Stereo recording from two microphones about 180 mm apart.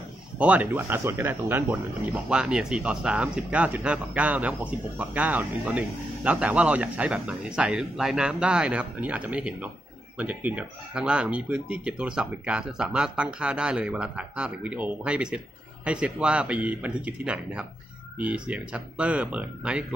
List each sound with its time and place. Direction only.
0.4 s speech: 10° right (ahead or behind)